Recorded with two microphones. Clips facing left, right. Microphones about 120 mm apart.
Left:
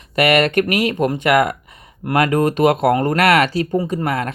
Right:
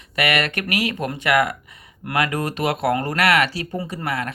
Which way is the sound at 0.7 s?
25° left (ahead or behind).